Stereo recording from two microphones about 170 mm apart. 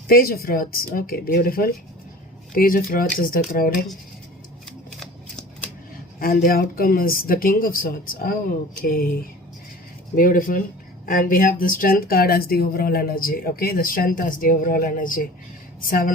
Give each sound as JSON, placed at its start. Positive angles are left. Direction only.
{"t": 0.1, "sound": "speech", "side_deg": 65}
{"t": 6.1, "sound": "speech", "side_deg": 60}
{"t": 10.2, "sound": "speech", "side_deg": 55}